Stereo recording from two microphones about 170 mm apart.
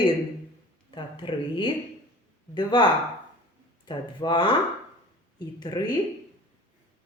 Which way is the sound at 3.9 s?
25° left (ahead or behind).